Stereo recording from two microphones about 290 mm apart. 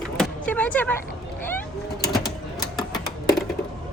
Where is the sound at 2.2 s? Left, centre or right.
Centre.